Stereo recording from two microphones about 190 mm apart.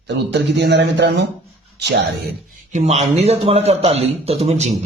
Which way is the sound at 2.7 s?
35° right (ahead or behind).